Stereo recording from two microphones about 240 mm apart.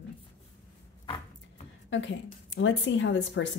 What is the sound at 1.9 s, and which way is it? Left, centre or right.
Speech, left.